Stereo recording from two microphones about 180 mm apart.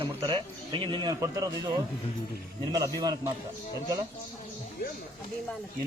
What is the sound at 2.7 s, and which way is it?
Speech, 20° right (ahead or behind).